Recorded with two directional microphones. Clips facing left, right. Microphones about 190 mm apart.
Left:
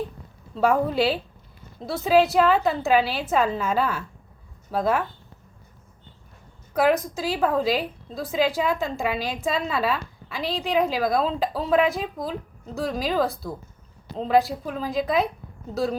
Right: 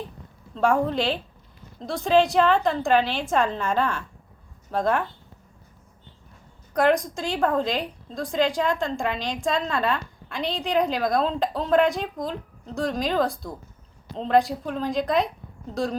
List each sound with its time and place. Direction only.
0.5 s a woman's voice: 5° left (ahead or behind)
6.7 s a woman's voice: 5° left (ahead or behind)